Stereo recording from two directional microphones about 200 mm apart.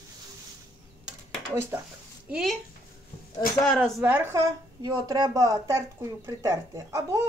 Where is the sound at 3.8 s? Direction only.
5° right (ahead or behind).